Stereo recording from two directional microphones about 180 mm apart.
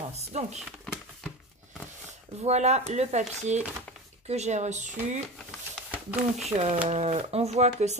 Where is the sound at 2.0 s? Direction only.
40° right (ahead or behind).